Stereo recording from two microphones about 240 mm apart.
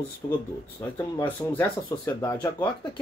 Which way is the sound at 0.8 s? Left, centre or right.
Centre.